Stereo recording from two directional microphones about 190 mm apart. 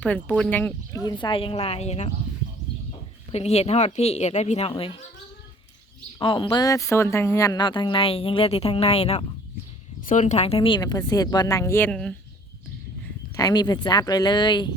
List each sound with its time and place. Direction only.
0.0 s speech: 5° left (ahead or behind)
1.0 s speech: 25° left (ahead or behind)
3.3 s speech: 35° left (ahead or behind)
6.1 s speech: 25° left (ahead or behind); by 12.1 s 5° left (ahead or behind)
13.3 s speech: 20° left (ahead or behind)